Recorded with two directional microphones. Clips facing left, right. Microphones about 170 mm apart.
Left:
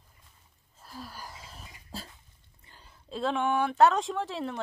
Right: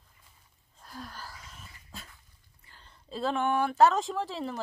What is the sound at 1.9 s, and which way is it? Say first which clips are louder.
Dog: left 7 dB; 35° left (ahead or behind).